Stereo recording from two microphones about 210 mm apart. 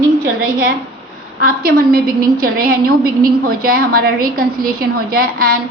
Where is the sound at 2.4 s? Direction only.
45° right (ahead or behind).